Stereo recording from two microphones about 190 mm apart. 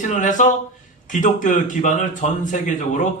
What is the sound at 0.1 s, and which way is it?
A man's voice, 40° left (ahead or behind).